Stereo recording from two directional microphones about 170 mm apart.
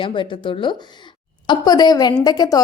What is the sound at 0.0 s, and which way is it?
A woman's voice, 30° left (ahead or behind).